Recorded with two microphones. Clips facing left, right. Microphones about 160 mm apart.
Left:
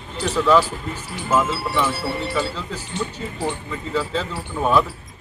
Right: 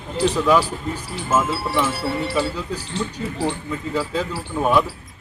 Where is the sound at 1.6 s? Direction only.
Centre (ahead or behind).